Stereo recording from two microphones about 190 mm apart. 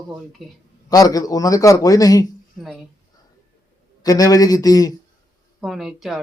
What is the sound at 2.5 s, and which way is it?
Speech, centre (ahead or behind).